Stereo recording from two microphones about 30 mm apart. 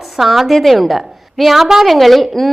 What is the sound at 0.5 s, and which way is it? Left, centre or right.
A woman's voice, centre.